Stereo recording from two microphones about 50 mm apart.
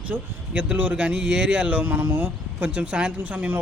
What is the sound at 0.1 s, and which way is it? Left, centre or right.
Speech, right.